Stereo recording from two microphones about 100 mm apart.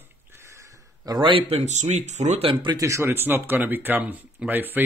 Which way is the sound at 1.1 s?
50° right (ahead or behind).